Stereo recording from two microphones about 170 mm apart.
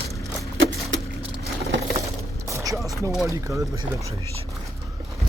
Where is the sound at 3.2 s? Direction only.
20° right (ahead or behind).